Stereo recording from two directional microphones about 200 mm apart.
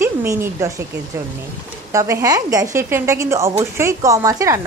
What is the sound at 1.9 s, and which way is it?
A woman's voice, 15° right (ahead or behind).